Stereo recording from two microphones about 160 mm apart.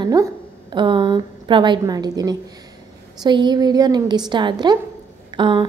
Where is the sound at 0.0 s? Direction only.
20° right (ahead or behind).